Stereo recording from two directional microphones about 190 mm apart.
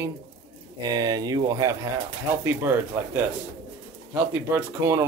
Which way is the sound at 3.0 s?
10° right (ahead or behind).